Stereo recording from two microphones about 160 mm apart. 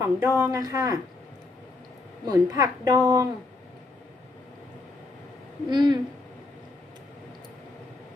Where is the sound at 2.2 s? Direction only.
25° right (ahead or behind).